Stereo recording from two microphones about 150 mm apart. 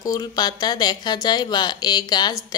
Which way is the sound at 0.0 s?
25° left (ahead or behind).